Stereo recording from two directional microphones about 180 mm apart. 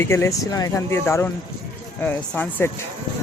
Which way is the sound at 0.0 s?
15° left (ahead or behind).